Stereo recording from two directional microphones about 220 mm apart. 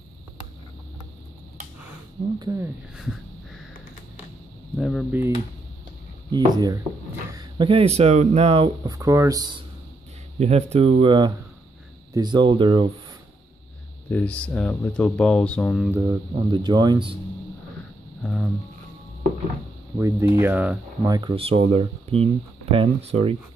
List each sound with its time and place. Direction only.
2.3 s speech: 15° right (ahead or behind)
3.0 s heart sounds: centre (ahead or behind)
4.7 s speech: centre (ahead or behind)
6.3 s speech: 20° right (ahead or behind)
10.4 s speech: 30° right (ahead or behind)
14.1 s speech: 5° left (ahead or behind)
15.9 s speech: 15° right (ahead or behind)
18.2 s speech: centre (ahead or behind)
20.0 s speech: 15° right (ahead or behind)
21.1 s speech: 20° right (ahead or behind)